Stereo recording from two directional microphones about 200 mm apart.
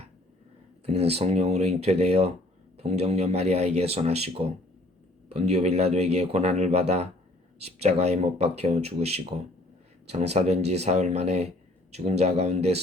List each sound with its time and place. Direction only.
0.9 s speech: 30° right (ahead or behind)